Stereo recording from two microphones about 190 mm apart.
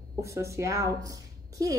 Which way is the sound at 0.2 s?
15° right (ahead or behind).